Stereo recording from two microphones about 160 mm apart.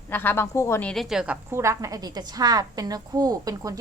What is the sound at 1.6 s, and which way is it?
A woman's voice, 20° right (ahead or behind).